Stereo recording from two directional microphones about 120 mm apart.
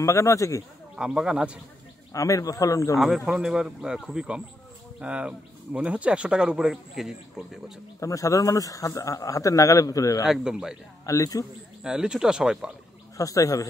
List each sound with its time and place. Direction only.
0.0 s a man's voice: 25° left (ahead or behind)
0.9 s speech: 5° right (ahead or behind)
2.1 s a man's voice: 25° left (ahead or behind)
3.3 s speech: 5° right (ahead or behind)
8.0 s a man's voice: 25° left (ahead or behind)
10.2 s speech: 5° right (ahead or behind)
11.1 s a man's voice: 25° left (ahead or behind)
11.8 s speech: 5° right (ahead or behind)
13.2 s a man's voice: 30° left (ahead or behind)